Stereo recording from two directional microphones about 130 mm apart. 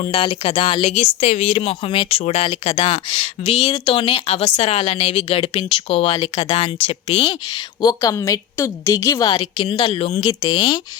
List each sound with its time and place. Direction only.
0.0 s speech: 45° left (ahead or behind)
6.3 s a woman's voice: 40° left (ahead or behind); by 9.3 s 20° left (ahead or behind)
9.3 s speech: 40° left (ahead or behind)
10.2 s speech: 35° left (ahead or behind)